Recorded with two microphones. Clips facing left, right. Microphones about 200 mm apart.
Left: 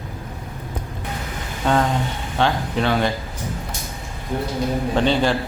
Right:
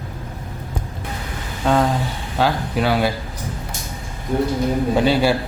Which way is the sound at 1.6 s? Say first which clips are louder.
Right 2 dB; centre (ahead or behind).